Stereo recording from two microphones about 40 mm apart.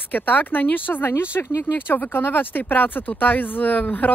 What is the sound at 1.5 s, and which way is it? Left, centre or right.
A woman's voice, left.